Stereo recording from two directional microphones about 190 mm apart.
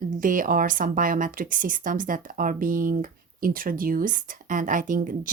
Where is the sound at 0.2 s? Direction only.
45° right (ahead or behind).